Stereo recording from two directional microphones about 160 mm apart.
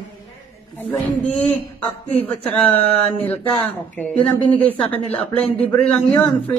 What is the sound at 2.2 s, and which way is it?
A man's voice, 10° left (ahead or behind).